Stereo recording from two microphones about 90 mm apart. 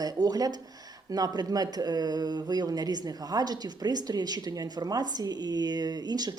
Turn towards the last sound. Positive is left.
turn(degrees=-50)  # may be behind; listen again after turning